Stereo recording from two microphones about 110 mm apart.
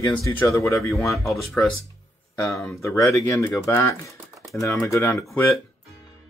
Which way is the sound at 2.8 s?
30° left (ahead or behind).